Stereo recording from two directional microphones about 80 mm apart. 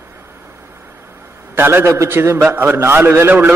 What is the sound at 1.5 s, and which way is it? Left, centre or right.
A man's voice, right.